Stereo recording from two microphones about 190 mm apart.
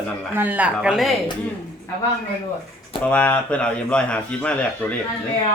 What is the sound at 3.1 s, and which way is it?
A man's voice, 5° left (ahead or behind).